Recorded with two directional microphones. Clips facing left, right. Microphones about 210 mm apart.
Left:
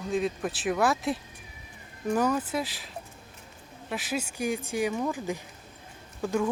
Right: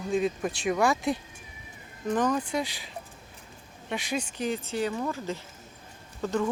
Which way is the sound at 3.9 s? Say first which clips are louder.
Right 1 dB; 5° left (ahead or behind).